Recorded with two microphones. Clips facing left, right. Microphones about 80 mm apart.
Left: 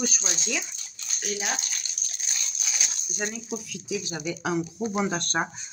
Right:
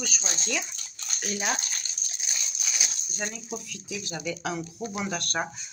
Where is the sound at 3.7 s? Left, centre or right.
Centre.